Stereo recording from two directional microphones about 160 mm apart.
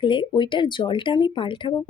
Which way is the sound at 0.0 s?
30° left (ahead or behind).